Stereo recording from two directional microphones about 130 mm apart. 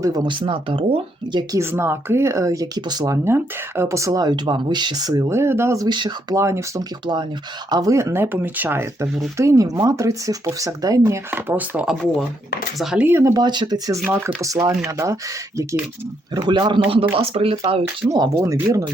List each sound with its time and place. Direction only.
0.0 s speech: 30° right (ahead or behind)
1.5 s speech: 20° right (ahead or behind)
5.9 s speech: 35° right (ahead or behind)
6.3 s speech: 20° right (ahead or behind)
7.0 s speech: 35° right (ahead or behind); by 13.1 s 5° right (ahead or behind)
13.1 s speech: 15° right (ahead or behind)
13.3 s speech: 35° right (ahead or behind)
17.2 s speech: 45° right (ahead or behind)
18.1 s speech: 25° right (ahead or behind)